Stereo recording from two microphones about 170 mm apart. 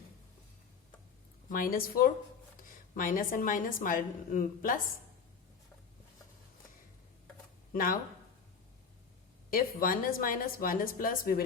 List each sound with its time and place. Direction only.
1.5 s a woman's voice: 55° left (ahead or behind)
7.7 s speech: 55° left (ahead or behind)
9.5 s speech: 55° left (ahead or behind)